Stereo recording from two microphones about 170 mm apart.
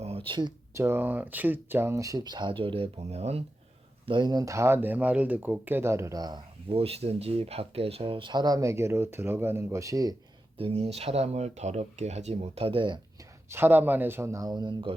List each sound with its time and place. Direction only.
0.3 s speech: 25° right (ahead or behind)
4.0 s speech: 30° right (ahead or behind)
10.6 s speech: 35° right (ahead or behind)
13.5 s speech: 10° right (ahead or behind); by 14.9 s 30° right (ahead or behind)